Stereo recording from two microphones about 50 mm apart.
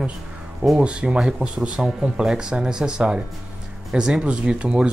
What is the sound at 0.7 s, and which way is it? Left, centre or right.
Speech, right.